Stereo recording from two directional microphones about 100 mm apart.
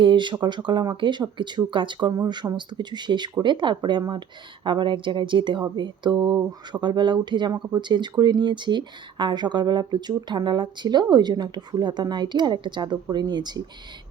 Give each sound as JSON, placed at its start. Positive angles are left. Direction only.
{"t": 0.0, "sound": "speech", "side_deg": -55}